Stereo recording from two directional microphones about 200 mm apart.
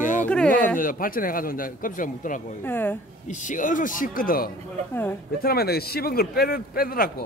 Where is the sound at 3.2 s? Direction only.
40° left (ahead or behind).